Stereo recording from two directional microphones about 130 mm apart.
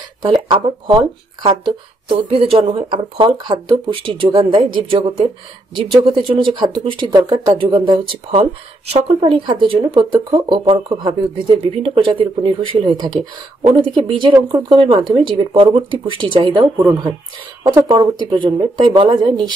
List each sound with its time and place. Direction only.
1.4 s speech: 40° right (ahead or behind)
8.9 s speech: 45° right (ahead or behind)